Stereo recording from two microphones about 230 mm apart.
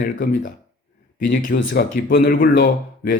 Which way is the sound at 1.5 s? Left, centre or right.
Left.